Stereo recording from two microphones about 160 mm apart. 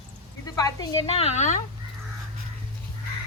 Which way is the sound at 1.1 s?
45° left (ahead or behind).